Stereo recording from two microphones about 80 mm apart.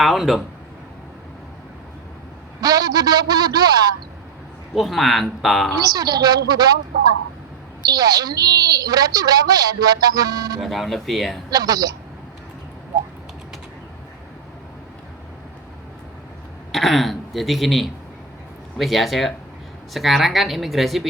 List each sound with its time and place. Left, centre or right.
0.0 s speech: centre
2.6 s a man's voice: right
4.7 s speech: centre
5.9 s a woman's voice: right
7.9 s a woman's voice: right
10.6 s speech: centre
11.5 s a woman's voice: right
16.7 s speech: centre